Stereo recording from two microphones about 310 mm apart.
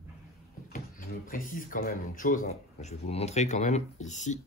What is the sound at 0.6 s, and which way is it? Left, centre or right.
Speech, left.